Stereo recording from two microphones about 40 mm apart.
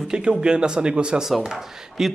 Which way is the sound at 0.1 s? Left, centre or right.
Right.